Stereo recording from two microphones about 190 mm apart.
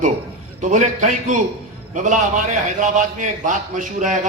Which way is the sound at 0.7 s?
40° right (ahead or behind).